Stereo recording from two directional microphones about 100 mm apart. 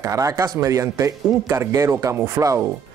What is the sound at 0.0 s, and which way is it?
Speech, 30° right (ahead or behind).